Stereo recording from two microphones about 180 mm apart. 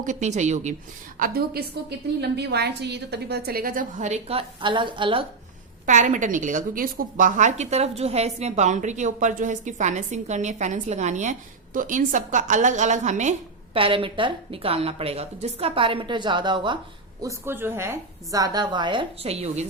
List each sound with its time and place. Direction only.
0.0 s a woman's voice: 40° right (ahead or behind)
1.2 s a woman's voice: 60° right (ahead or behind); by 5.2 s 25° right (ahead or behind)
5.8 s a woman's voice: 45° right (ahead or behind)
13.7 s a woman's voice: 30° right (ahead or behind)
17.2 s a woman's voice: 15° right (ahead or behind); by 19.6 s 35° right (ahead or behind)